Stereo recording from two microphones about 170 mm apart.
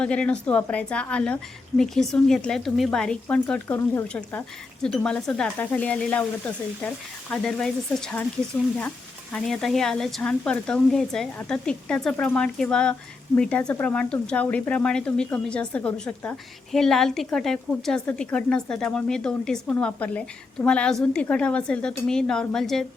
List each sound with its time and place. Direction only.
0.0 s speech: 5° left (ahead or behind)
9.3 s speech: centre (ahead or behind)